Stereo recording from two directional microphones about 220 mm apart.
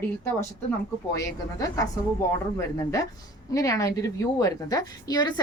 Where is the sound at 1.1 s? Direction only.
15° left (ahead or behind).